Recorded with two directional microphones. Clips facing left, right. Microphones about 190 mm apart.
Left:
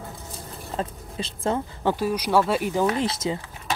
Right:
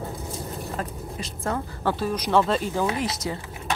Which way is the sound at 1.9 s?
10° left (ahead or behind).